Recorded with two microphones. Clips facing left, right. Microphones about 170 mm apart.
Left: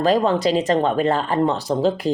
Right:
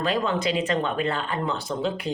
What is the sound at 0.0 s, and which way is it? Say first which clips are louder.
A woman's voice: left 7 dB; 40° left (ahead or behind).